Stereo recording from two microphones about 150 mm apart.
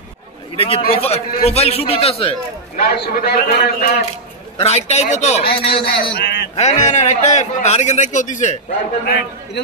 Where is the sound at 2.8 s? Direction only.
80° left.